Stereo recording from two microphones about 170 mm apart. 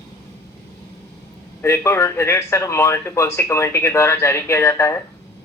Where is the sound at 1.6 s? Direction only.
15° left (ahead or behind).